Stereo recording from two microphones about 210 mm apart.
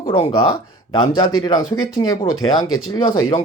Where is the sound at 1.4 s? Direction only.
20° left (ahead or behind).